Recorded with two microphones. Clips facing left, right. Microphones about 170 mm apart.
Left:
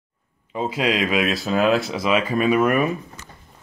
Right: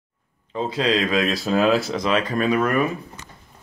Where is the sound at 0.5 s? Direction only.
10° left (ahead or behind).